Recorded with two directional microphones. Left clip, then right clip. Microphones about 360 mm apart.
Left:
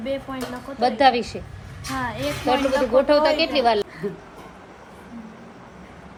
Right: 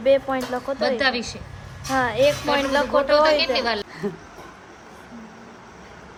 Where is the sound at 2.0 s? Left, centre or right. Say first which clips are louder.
Right 9 dB; right.